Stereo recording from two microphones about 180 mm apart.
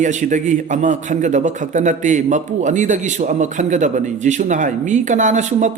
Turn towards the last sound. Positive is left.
turn(degrees=-40)  # may be behind; listen again after turning